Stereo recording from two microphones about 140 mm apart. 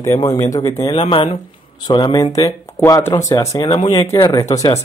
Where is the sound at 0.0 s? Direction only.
25° left (ahead or behind).